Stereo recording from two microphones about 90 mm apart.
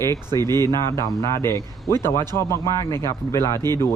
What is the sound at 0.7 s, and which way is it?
A man's voice, 35° left (ahead or behind).